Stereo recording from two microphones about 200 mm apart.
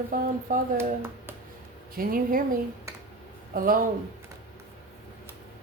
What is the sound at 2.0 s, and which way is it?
Speech, 45° right (ahead or behind).